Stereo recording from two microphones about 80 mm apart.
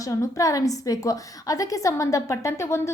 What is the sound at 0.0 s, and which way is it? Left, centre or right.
A woman's voice, left.